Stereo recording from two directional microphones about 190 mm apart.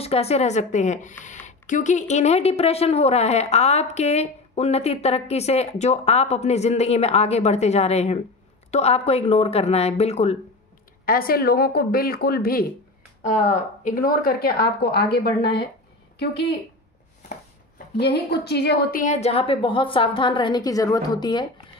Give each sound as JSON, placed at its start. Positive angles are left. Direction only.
{"t": 0.0, "sound": "a woman's voice", "side_deg": 30}
{"t": 11.1, "sound": "a woman's voice", "side_deg": 50}
{"t": 17.9, "sound": "a woman's voice", "side_deg": 60}
{"t": 18.9, "sound": "a woman's voice", "side_deg": 35}